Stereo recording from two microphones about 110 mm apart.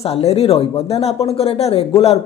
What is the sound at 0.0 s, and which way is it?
A woman's voice, 70° left (ahead or behind).